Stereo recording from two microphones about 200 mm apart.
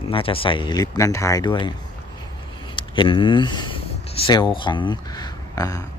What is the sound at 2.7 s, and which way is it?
Speech, 25° left (ahead or behind).